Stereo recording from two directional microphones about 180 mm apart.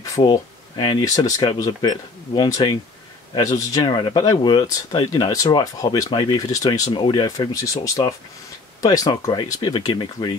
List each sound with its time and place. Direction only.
0.0 s speech: 20° left (ahead or behind)